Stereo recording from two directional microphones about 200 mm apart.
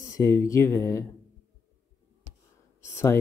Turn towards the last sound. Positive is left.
turn(degrees=15)  # may be behind; listen again after turning